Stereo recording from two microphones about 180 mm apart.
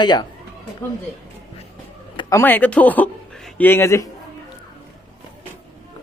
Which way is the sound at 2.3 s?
10° left (ahead or behind).